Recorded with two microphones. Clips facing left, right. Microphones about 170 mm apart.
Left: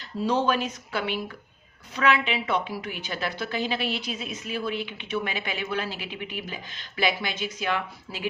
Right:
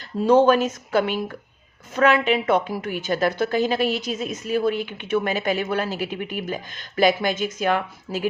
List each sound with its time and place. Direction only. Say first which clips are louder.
0.3 s a woman's voice: right 9 dB; 50° right (ahead or behind)